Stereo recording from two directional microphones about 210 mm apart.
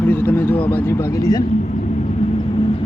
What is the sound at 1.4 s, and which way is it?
Vehicle, 35° left (ahead or behind).